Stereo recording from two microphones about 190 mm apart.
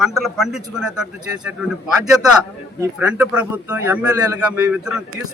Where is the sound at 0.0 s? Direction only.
Centre (ahead or behind).